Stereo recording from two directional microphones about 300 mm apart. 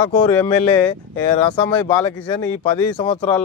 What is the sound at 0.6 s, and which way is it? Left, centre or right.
Speech, centre.